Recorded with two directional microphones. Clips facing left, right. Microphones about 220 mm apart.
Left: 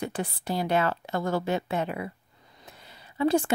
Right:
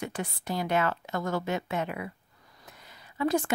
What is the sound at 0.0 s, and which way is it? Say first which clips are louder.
A woman's voice: left 3 dB; 30° left (ahead or behind).